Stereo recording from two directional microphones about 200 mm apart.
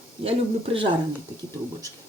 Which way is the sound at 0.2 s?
30° right (ahead or behind).